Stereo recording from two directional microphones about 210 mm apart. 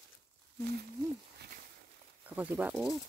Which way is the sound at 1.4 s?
50° right (ahead or behind).